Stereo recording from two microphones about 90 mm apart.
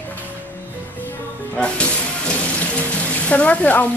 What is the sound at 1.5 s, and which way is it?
Speech, 15° left (ahead or behind).